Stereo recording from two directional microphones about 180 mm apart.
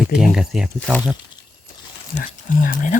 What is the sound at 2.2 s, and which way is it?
Speech, 45° left (ahead or behind).